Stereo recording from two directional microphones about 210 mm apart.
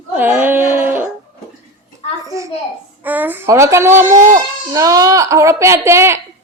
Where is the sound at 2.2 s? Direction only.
15° right (ahead or behind).